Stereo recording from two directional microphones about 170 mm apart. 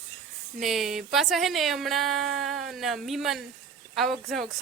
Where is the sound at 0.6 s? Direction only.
Centre (ahead or behind).